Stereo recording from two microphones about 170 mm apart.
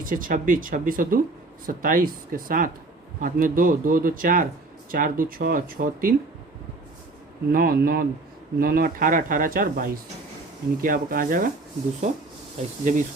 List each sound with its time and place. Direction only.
0.0 s speech: 55° right (ahead or behind)
7.5 s speech: 60° right (ahead or behind)